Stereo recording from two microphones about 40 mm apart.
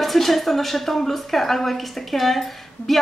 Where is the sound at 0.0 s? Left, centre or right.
Centre.